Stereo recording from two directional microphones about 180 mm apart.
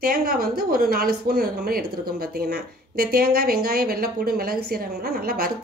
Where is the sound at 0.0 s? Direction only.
55° right (ahead or behind).